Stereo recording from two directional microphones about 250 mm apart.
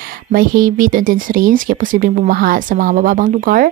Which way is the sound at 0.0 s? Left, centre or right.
Right.